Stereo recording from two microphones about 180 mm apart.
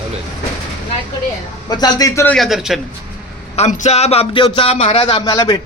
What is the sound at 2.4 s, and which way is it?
Speech, centre (ahead or behind).